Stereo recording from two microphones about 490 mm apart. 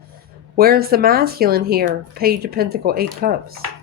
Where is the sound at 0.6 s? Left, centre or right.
Centre.